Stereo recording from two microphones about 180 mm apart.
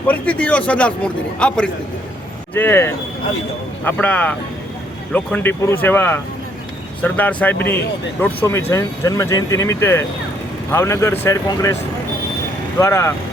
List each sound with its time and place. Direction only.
0.1 s speech: 5° left (ahead or behind)
12.8 s speech: 15° left (ahead or behind)